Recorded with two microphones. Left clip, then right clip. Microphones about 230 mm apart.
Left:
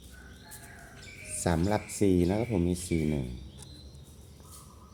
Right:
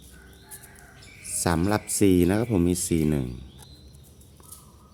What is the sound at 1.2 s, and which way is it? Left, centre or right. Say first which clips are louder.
Speech: right 5 dB; right.